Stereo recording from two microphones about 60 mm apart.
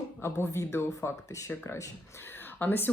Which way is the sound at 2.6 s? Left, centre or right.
Left.